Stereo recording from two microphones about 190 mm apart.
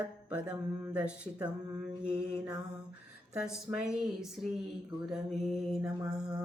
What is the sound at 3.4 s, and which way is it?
Mantra, 5° right (ahead or behind).